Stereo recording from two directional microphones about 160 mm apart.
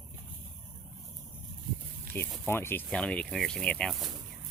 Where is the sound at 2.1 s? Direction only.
15° left (ahead or behind).